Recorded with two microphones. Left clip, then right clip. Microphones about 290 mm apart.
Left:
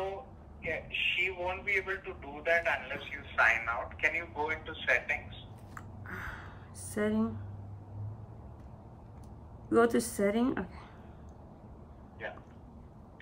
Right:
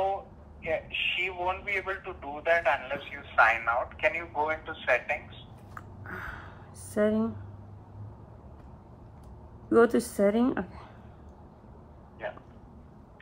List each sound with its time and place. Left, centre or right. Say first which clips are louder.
0.0 s a man's voice: right 8 dB; centre
5.8 s a sound: right 3 dB; centre
9.7 s a woman's voice: right 4 dB; centre